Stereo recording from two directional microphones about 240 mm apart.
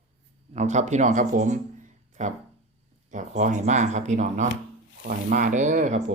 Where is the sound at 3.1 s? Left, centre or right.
Right.